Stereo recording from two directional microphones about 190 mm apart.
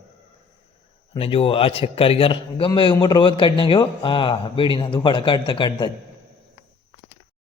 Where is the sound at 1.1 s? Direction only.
30° left (ahead or behind).